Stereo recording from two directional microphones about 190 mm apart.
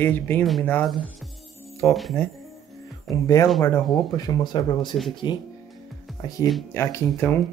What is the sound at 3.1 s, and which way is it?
Speech, 15° left (ahead or behind).